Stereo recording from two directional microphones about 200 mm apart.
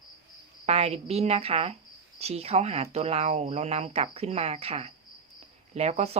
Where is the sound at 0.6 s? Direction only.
30° right (ahead or behind).